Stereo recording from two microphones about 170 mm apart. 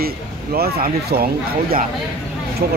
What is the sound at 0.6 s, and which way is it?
Speech, 65° right (ahead or behind).